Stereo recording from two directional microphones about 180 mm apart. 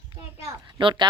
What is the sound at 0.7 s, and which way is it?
Speech, 25° right (ahead or behind).